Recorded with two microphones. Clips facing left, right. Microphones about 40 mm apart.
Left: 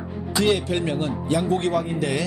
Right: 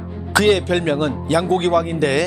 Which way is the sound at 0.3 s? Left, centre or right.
Right.